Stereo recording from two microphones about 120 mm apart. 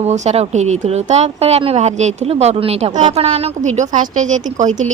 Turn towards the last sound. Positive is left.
turn(degrees=-90)